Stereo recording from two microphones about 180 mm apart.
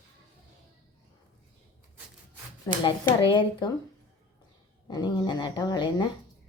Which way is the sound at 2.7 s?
20° left (ahead or behind).